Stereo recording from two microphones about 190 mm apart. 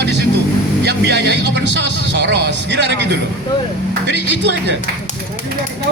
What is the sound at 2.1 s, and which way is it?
A man's voice, 65° right (ahead or behind).